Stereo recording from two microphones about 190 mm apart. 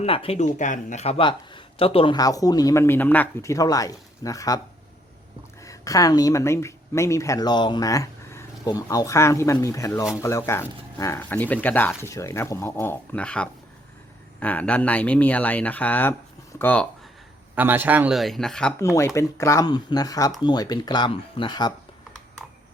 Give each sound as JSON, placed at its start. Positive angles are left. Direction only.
{"t": 0.0, "sound": "speech", "side_deg": 30}
{"t": 5.6, "sound": "speech", "side_deg": 15}
{"t": 17.5, "sound": "speech", "side_deg": -10}
{"t": 18.8, "sound": "speech", "side_deg": 15}